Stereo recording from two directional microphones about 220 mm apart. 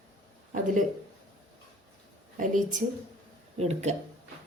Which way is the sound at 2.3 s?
35° right (ahead or behind).